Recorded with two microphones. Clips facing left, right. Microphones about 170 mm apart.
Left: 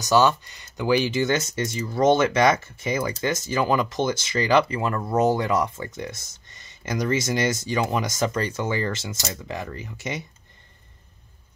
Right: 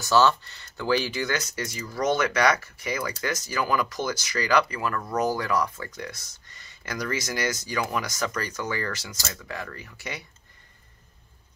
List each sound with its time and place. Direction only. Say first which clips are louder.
0.0 s speech: left 2 dB; 15° left (ahead or behind)